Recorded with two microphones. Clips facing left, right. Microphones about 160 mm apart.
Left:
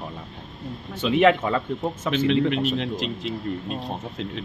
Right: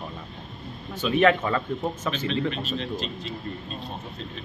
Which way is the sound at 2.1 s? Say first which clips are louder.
Left 7 dB; 70° left (ahead or behind).